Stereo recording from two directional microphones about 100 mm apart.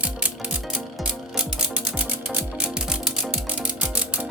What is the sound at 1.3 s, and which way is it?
Music, 10° right (ahead or behind).